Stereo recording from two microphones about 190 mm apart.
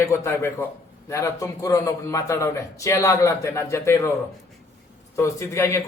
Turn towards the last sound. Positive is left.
turn(degrees=15)  # may be behind; listen again after turning